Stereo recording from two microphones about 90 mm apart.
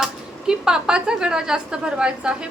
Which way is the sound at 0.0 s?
5° right (ahead or behind).